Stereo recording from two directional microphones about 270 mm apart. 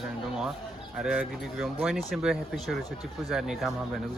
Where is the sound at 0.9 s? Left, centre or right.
Centre.